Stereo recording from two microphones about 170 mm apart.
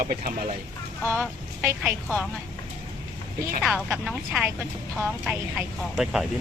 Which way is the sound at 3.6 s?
Centre (ahead or behind).